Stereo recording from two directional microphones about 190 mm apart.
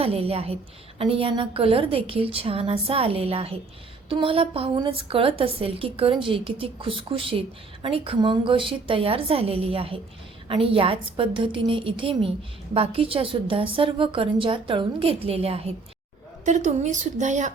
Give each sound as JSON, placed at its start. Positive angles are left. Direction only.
{"t": 0.0, "sound": "a woman's voice", "side_deg": -30}